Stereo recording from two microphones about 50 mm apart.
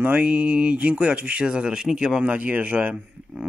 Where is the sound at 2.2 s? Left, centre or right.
Right.